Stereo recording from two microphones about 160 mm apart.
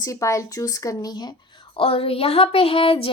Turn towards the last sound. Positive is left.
turn(degrees=35)  # may be behind; listen again after turning